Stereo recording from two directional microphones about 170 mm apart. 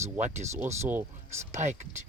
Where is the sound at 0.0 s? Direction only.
45° right (ahead or behind).